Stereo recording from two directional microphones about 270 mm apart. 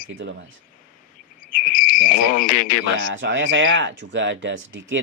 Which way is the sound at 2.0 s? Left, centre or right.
Left.